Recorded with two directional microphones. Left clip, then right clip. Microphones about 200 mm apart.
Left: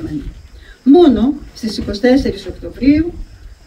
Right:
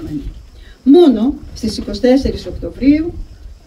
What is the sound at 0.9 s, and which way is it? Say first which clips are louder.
Speech: even; 15° right (ahead or behind).